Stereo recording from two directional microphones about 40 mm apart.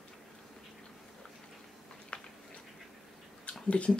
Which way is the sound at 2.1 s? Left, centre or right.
Left.